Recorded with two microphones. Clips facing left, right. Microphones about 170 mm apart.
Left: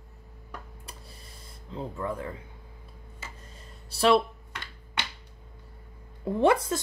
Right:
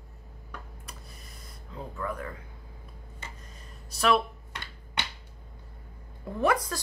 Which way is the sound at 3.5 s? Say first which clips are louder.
Even; 30° left (ahead or behind).